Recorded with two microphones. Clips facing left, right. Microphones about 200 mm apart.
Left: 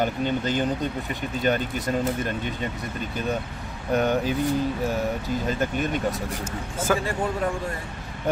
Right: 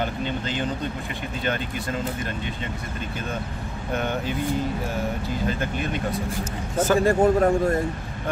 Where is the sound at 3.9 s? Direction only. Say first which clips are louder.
Left 5 dB; 40° left (ahead or behind).